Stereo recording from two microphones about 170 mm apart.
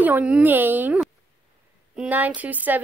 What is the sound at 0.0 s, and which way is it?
Speech, 10° right (ahead or behind).